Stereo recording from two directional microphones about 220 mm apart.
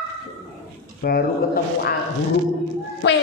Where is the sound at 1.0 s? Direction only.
45° left (ahead or behind).